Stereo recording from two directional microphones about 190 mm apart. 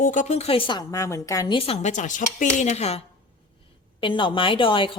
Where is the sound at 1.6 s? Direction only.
35° left (ahead or behind).